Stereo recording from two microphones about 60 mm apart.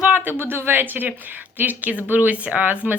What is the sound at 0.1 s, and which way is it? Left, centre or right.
Speech, right.